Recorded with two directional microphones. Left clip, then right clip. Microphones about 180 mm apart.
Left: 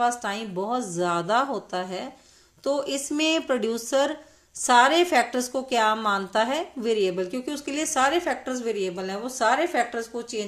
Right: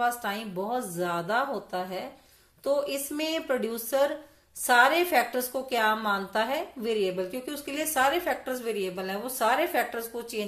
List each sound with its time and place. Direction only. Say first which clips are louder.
0.0 s a woman's voice: left 3 dB; 35° left (ahead or behind)